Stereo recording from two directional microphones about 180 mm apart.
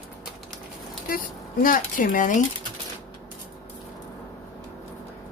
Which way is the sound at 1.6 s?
50° left (ahead or behind).